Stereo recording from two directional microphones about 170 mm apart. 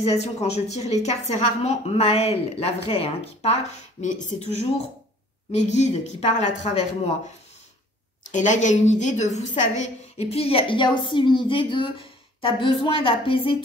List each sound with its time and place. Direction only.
0.0 s a woman's voice: 40° left (ahead or behind)
8.3 s a woman's voice: 45° left (ahead or behind)